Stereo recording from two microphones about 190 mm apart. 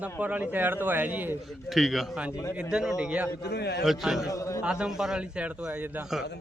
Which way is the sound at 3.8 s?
Centre (ahead or behind).